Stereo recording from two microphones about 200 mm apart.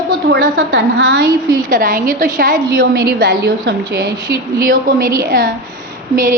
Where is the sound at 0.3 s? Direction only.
65° right (ahead or behind).